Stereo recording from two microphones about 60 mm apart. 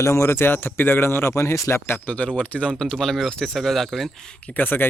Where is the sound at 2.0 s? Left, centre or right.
Left.